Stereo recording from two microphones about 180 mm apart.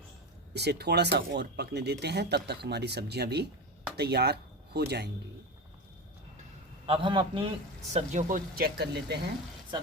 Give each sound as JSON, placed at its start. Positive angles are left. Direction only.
{"t": 0.5, "sound": "speech", "side_deg": -65}
{"t": 6.8, "sound": "a man's voice", "side_deg": -30}
{"t": 7.9, "sound": "speech", "side_deg": -40}
{"t": 8.5, "sound": "speech", "side_deg": -60}